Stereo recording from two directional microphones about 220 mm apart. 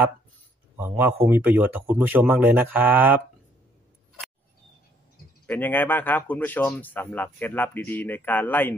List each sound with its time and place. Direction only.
0.7 s speech: 10° right (ahead or behind)
5.5 s speech: 10° left (ahead or behind)